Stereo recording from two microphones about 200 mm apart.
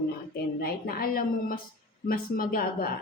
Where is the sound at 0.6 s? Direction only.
50° left (ahead or behind).